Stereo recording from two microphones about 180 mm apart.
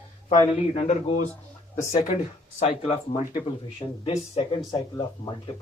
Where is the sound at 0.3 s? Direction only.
35° left (ahead or behind).